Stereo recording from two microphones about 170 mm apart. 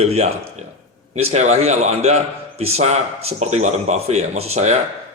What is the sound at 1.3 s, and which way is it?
A man's voice, 40° right (ahead or behind).